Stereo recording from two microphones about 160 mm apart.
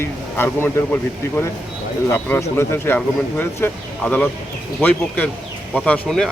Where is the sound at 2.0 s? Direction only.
15° left (ahead or behind).